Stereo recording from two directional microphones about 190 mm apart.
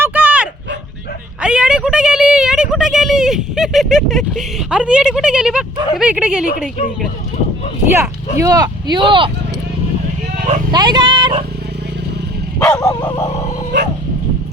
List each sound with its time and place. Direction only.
0.0 s dog: 10° right (ahead or behind)
1.4 s a sound: 5° right (ahead or behind)
6.0 s speech: 5° right (ahead or behind)
7.9 s speech: 15° right (ahead or behind)
10.3 s vehicle: 40° right (ahead or behind)
10.7 s speech: 25° right (ahead or behind)
12.5 s dog: 10° left (ahead or behind)